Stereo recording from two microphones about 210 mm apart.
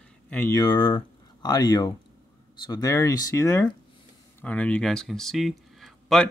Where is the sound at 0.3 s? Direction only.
15° left (ahead or behind).